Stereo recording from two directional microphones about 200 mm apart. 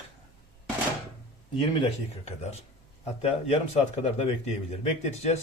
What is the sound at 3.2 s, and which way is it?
Speech, 30° left (ahead or behind).